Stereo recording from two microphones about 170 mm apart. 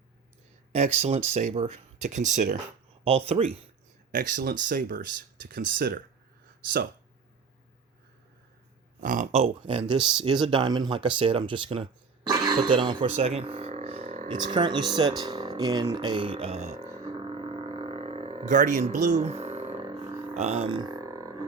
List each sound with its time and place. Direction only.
0.7 s speech: 40° right (ahead or behind)
3.0 s speech: 35° right (ahead or behind)
4.1 s speech: 50° right (ahead or behind)
9.0 s speech: 50° right (ahead or behind); by 11.9 s 30° right (ahead or behind)
12.3 s a sound: 25° right (ahead or behind)
14.3 s speech: 25° right (ahead or behind)
16.8 s didgeridoo: 20° right (ahead or behind)
17.2 s a sound: 35° right (ahead or behind)